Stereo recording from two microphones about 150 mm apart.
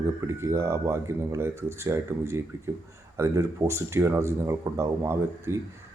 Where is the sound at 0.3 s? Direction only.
20° right (ahead or behind).